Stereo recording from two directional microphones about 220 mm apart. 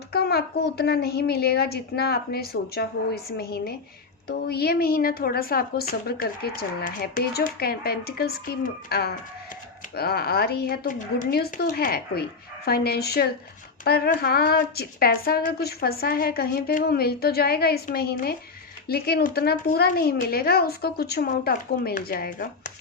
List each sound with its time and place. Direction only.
0.1 s a woman's voice: 45° left (ahead or behind)